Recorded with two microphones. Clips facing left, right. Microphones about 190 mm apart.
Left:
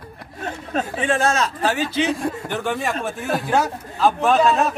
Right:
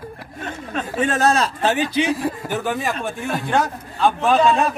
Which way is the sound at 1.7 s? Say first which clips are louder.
Right 2 dB; 15° right (ahead or behind).